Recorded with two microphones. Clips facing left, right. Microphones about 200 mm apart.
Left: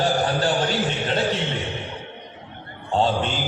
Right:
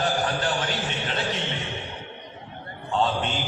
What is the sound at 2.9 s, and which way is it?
Speech, 35° left (ahead or behind).